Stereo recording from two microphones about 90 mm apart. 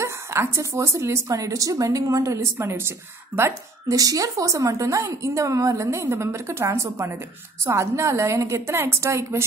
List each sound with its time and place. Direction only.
0.0 s a woman's voice: 30° right (ahead or behind)
3.9 s a woman's voice: 40° right (ahead or behind)